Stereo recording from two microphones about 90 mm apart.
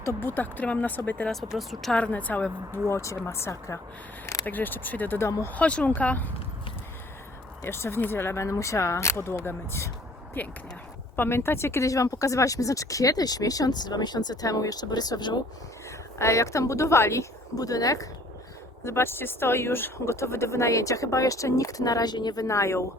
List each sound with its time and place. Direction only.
0.0 s speech: 25° left (ahead or behind)
1.5 s speech: centre (ahead or behind)
2.0 s a woman's voice: 15° left (ahead or behind)
2.9 s speech: 35° left (ahead or behind)
4.4 s speech: 20° left (ahead or behind)
5.5 s a woman's voice: 15° left (ahead or behind)
7.6 s speech: 30° left (ahead or behind); by 15.4 s 50° left (ahead or behind)
16.1 s speech: 35° left (ahead or behind)
18.9 s speech: 25° left (ahead or behind); by 22.4 s 50° left (ahead or behind)
22.4 s speech: 35° left (ahead or behind)